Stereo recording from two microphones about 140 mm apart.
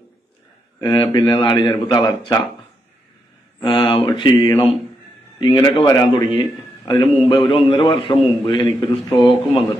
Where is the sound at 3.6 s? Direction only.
40° left (ahead or behind).